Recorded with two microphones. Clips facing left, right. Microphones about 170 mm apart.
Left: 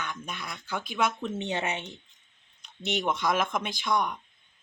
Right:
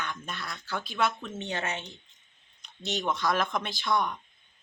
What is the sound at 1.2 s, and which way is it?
A woman's voice, 25° left (ahead or behind).